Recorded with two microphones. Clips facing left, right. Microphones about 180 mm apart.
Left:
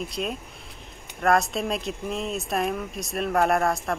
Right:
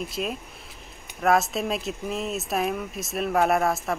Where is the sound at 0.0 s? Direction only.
Centre (ahead or behind).